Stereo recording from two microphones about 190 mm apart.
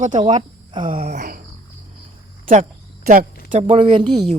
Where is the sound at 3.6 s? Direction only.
25° right (ahead or behind).